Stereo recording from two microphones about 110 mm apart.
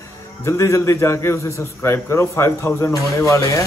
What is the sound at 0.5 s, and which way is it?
A man's voice, 25° left (ahead or behind).